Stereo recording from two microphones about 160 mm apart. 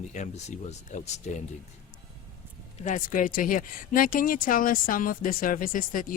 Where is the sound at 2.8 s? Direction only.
55° left (ahead or behind).